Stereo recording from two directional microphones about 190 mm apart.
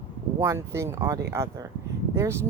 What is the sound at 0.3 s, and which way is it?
Speech, 15° right (ahead or behind).